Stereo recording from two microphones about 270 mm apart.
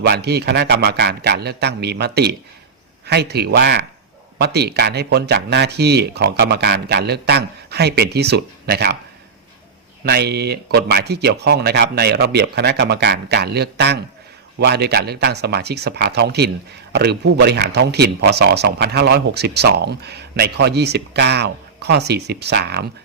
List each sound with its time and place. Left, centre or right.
0.0 s a man's voice: right
10.1 s a man's voice: right